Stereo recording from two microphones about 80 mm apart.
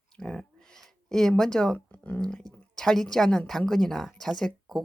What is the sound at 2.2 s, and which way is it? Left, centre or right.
A woman's voice, centre.